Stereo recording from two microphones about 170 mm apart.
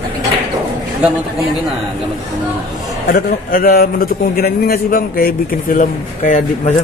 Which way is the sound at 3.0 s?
60° left (ahead or behind).